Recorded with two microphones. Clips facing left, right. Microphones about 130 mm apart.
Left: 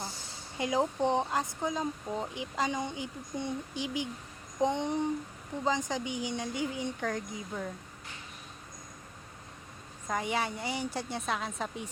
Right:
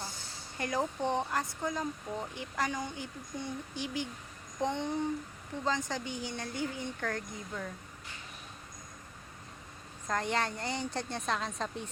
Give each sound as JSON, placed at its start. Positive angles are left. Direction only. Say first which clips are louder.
{"t": 0.5, "sound": "speech", "louder": "left 4 dB", "side_deg": 15}
{"t": 10.1, "sound": "a woman's voice", "louder": "even", "side_deg": 10}